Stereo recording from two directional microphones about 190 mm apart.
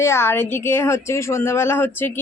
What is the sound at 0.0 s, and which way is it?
Speech, 15° left (ahead or behind).